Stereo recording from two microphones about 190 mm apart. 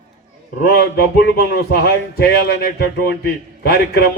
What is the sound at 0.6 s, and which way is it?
Speech, 60° left (ahead or behind).